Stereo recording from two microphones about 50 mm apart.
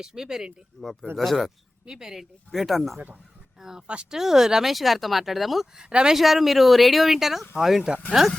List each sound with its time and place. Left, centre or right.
0.0 s speech: centre
1.1 s speech: centre
1.8 s speech: centre
2.5 s speech: centre
3.6 s speech: centre
3.8 s speech: right
4.2 s speech: centre
5.7 s speech: centre
6.1 s speech: centre